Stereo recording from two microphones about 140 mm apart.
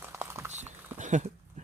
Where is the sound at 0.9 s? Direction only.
60° right (ahead or behind).